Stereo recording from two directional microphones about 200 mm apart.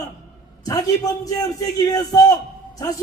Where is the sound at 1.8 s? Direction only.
20° left (ahead or behind).